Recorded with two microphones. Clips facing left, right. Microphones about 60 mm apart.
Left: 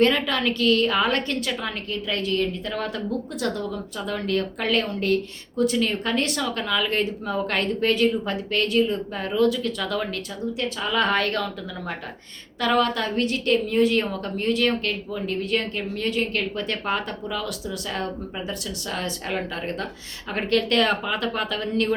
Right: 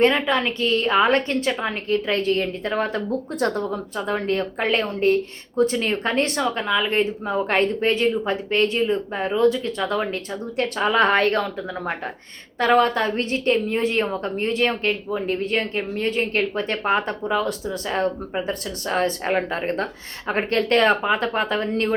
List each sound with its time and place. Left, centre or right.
0.0 s a woman's voice: right
10.6 s a woman's voice: right